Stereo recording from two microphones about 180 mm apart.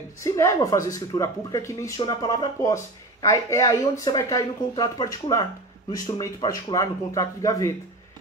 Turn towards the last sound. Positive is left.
turn(degrees=15)  # may be behind; listen again after turning